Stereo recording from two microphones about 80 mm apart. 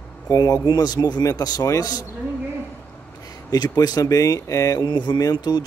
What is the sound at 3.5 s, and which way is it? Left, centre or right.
Speech, left.